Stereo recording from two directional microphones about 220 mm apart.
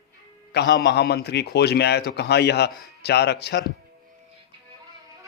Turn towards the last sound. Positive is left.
turn(degrees=50)  # may be behind; listen again after turning